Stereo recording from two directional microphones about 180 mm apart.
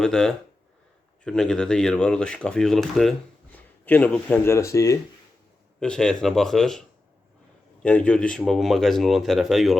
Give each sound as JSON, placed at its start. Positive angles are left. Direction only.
{"t": 0.0, "sound": "speech", "side_deg": 5}
{"t": 5.8, "sound": "speech", "side_deg": 5}